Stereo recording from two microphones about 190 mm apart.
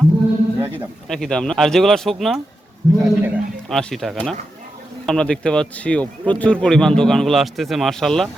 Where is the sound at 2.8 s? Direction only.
20° right (ahead or behind).